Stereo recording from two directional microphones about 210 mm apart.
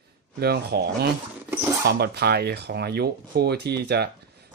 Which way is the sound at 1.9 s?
50° right (ahead or behind).